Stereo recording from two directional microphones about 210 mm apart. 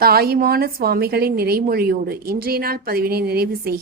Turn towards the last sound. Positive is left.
turn(degrees=-45)  # may be behind; listen again after turning